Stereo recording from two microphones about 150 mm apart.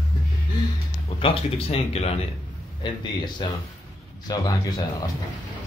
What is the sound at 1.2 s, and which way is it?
Speech, 40° left (ahead or behind).